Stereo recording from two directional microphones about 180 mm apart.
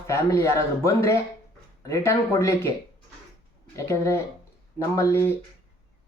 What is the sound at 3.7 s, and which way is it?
Speech, 15° left (ahead or behind).